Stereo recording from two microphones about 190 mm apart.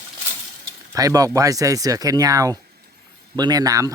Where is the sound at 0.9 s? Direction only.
20° right (ahead or behind).